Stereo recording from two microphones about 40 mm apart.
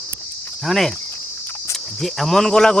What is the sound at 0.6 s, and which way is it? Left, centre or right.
Speech, centre.